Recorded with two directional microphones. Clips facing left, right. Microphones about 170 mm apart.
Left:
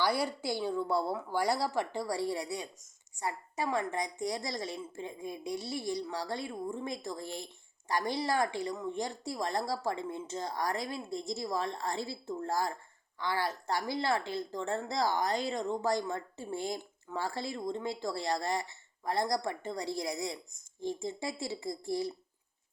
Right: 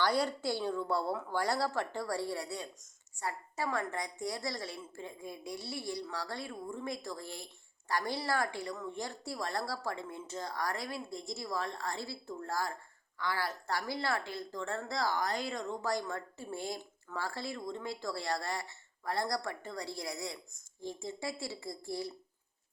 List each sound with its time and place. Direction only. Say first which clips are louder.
0.0 s a woman's voice: even; 10° left (ahead or behind)